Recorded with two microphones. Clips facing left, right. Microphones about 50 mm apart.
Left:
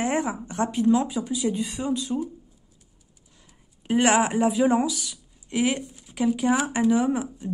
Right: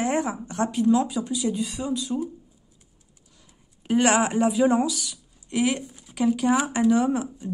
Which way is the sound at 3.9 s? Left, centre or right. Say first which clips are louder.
Even; centre.